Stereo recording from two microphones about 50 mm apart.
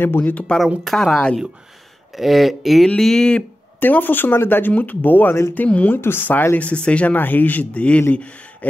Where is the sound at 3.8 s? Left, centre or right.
Left.